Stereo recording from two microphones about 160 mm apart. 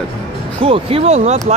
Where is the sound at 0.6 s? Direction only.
35° right (ahead or behind).